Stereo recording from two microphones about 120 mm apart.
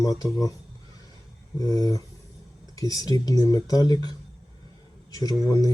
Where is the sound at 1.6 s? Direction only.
30° left (ahead or behind).